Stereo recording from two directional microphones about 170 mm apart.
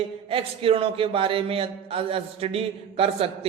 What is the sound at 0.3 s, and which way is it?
A man's voice, 35° right (ahead or behind).